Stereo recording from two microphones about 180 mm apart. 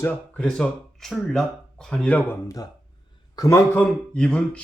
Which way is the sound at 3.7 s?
10° left (ahead or behind).